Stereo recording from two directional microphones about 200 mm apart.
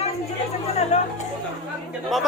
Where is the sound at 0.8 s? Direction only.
35° left (ahead or behind).